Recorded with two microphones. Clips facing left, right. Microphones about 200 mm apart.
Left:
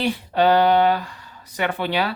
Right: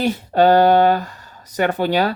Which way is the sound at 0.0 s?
45° right (ahead or behind).